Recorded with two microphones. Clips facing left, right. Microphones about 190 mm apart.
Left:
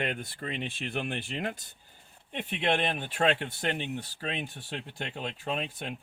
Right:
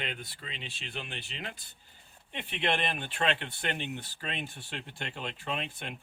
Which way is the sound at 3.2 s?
45° left (ahead or behind).